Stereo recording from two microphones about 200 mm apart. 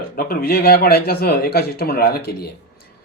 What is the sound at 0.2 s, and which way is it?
Speech, 50° left (ahead or behind).